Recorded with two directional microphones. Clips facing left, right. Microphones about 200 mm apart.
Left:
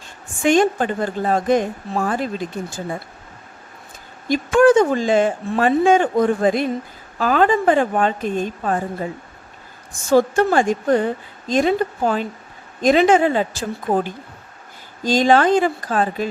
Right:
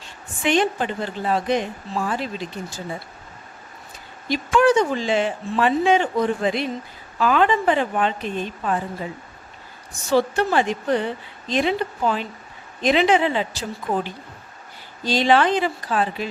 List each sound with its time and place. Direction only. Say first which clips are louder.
0.4 s a woman's voice: left 5 dB; 45° left (ahead or behind)
4.3 s a woman's voice: left 4 dB; 50° left (ahead or behind)